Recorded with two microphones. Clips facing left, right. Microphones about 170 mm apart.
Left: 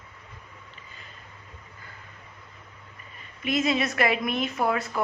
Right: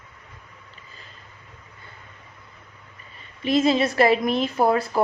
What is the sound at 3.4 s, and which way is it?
A woman's voice, 30° right (ahead or behind).